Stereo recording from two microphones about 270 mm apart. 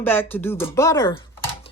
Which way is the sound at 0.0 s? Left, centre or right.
Centre.